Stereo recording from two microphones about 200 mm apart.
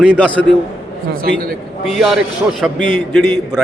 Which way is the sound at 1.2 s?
50° right (ahead or behind).